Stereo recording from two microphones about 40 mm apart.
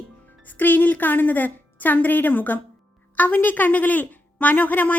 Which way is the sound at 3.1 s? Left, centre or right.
Left.